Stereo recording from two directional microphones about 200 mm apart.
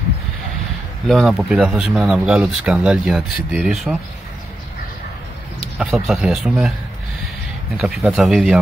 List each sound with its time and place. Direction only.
1.0 s speech: centre (ahead or behind)
5.8 s speech: centre (ahead or behind)
7.7 s speech: centre (ahead or behind)